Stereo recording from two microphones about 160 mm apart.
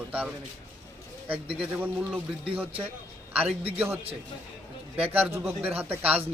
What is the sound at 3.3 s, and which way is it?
Speech, 10° right (ahead or behind).